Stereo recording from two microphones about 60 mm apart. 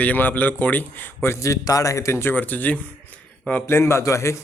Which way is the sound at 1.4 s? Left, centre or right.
Left.